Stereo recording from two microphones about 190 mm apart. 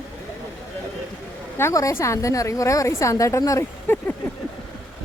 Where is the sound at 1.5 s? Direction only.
15° left (ahead or behind).